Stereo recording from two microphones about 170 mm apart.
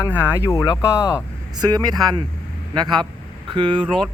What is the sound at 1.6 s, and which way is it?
Speech, 25° right (ahead or behind).